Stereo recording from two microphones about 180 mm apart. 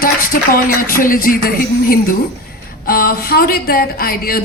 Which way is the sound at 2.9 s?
55° left (ahead or behind).